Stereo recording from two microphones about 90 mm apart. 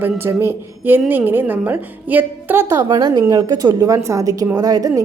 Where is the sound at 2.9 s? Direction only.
50° right (ahead or behind).